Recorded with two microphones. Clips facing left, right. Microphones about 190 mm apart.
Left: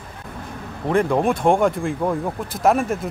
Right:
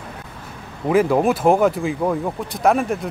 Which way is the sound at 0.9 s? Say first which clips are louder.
Right 2 dB; 5° right (ahead or behind).